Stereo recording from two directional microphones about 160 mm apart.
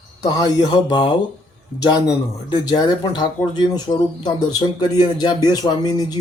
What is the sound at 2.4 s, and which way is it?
Speech, 25° left (ahead or behind).